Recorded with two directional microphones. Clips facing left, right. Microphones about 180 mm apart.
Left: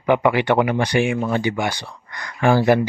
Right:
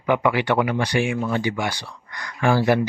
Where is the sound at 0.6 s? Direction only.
50° left (ahead or behind).